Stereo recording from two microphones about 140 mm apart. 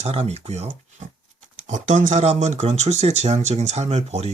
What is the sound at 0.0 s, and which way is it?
Speech, 50° right (ahead or behind).